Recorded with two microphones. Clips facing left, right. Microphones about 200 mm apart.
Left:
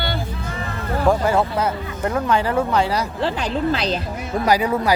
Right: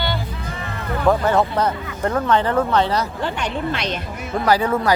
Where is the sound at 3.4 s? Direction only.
35° left (ahead or behind).